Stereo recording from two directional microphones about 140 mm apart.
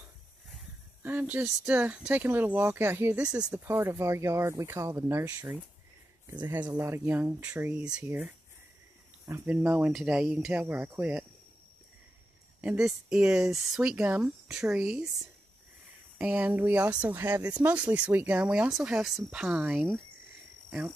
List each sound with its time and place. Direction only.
1.0 s speech: 10° right (ahead or behind)
3.6 s speech: 15° right (ahead or behind)
9.3 s speech: 15° right (ahead or behind)
12.6 s speech: 5° right (ahead or behind)